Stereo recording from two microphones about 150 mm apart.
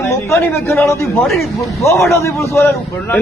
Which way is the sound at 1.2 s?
Centre (ahead or behind).